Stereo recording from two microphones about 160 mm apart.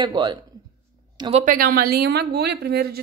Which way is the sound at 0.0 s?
30° right (ahead or behind).